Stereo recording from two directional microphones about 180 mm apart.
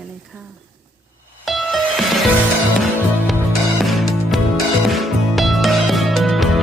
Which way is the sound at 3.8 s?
Centre (ahead or behind).